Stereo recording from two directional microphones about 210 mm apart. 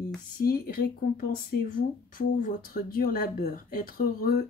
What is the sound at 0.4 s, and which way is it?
Speech, 45° left (ahead or behind).